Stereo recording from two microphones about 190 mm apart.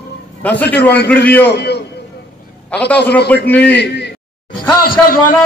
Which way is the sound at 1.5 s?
60° left (ahead or behind).